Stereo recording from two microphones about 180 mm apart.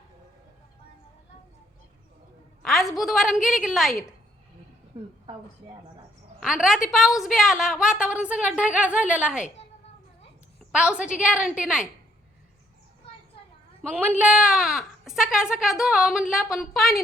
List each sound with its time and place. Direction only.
2.6 s a woman's voice: centre (ahead or behind)
4.9 s a woman's voice: 25° right (ahead or behind)
6.4 s a woman's voice: 5° right (ahead or behind)
10.7 s a woman's voice: 5° right (ahead or behind)
13.9 s a woman's voice: 5° right (ahead or behind)